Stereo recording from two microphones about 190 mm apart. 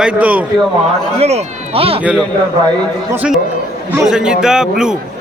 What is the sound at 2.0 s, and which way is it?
A man's voice, 5° right (ahead or behind).